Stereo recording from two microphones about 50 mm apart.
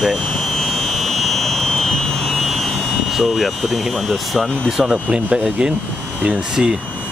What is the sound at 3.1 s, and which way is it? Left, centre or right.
Speech, centre.